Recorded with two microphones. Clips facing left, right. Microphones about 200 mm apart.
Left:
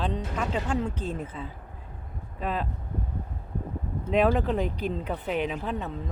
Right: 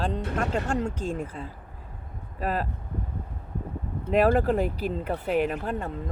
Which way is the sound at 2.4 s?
5° right (ahead or behind).